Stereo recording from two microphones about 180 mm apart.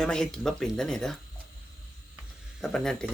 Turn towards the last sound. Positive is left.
turn(degrees=5)  # may be behind; listen again after turning